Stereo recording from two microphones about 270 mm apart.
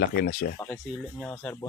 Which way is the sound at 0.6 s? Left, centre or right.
Centre.